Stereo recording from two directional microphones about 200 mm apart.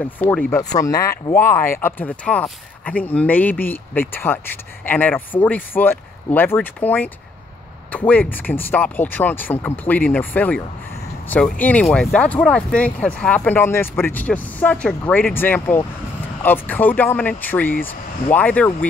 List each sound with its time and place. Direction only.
0.5 s speech: 15° left (ahead or behind)
8.1 s speech: 10° left (ahead or behind)